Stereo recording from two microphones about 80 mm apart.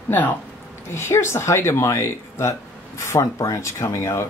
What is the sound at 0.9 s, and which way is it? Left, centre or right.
Speech, left.